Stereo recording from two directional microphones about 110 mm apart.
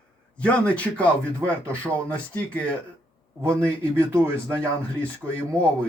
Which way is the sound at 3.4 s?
25° right (ahead or behind).